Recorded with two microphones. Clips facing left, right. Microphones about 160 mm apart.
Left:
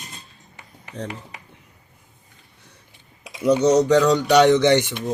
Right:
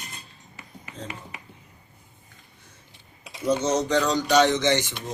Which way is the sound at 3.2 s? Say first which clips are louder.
Left 6 dB; 70° left (ahead or behind).